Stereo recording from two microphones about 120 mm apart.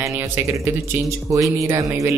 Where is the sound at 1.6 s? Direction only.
25° right (ahead or behind).